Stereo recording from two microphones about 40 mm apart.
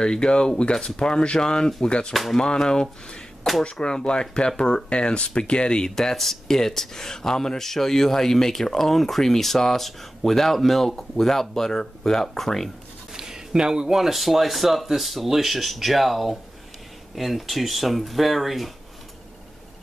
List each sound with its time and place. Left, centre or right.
0.0 s speech: left
3.4 s speech: centre
3.8 s speech: left
5.9 s speech: centre
13.1 s speech: centre